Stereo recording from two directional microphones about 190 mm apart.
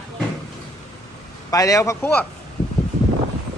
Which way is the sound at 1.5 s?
15° left (ahead or behind).